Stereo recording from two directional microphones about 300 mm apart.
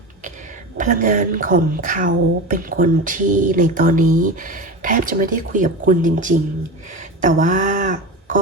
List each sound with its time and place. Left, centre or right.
0.8 s speech: right